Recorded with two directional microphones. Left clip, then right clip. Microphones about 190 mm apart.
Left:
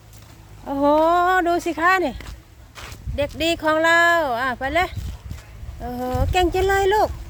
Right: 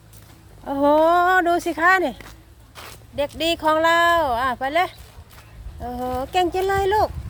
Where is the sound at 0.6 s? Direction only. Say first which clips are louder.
Right 1 dB; 5° right (ahead or behind).